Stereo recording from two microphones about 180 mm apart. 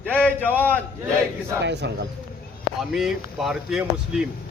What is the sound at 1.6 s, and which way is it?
Speech, 70° right (ahead or behind).